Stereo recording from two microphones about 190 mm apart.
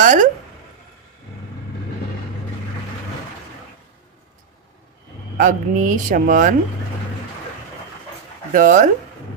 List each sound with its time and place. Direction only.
0.0 s speech: 45° right (ahead or behind)
5.4 s speech: 45° right (ahead or behind)
8.5 s speech: 45° right (ahead or behind)